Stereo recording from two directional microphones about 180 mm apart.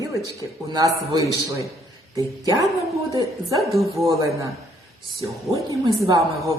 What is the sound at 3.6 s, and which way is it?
Speech, centre (ahead or behind).